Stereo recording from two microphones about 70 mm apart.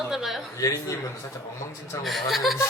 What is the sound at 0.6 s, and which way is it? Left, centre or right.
Speech, left.